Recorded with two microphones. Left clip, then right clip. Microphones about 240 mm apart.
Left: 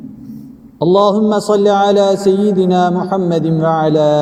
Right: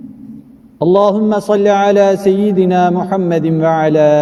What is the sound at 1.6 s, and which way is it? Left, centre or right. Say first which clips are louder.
Speech: right 2 dB; right.